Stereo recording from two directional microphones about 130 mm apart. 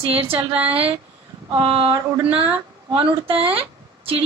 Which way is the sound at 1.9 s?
15° right (ahead or behind).